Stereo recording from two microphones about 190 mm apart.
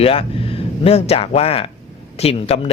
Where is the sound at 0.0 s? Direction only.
30° left (ahead or behind).